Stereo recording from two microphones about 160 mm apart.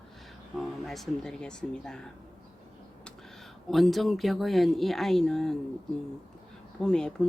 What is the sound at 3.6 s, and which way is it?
Speech, centre (ahead or behind).